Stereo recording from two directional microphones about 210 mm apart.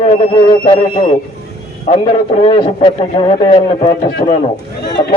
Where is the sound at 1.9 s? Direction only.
30° left (ahead or behind).